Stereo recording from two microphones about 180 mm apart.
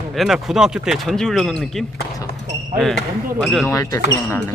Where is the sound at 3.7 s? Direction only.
20° left (ahead or behind).